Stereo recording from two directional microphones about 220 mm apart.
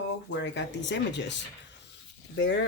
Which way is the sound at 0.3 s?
55° left (ahead or behind).